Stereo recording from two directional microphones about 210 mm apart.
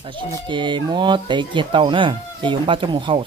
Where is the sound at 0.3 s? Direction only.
20° right (ahead or behind).